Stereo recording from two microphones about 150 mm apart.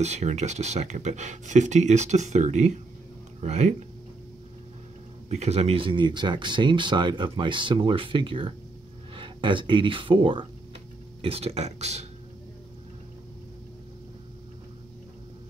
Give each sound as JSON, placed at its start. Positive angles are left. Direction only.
{"t": 0.0, "sound": "speech", "side_deg": -50}
{"t": 5.3, "sound": "speech", "side_deg": -45}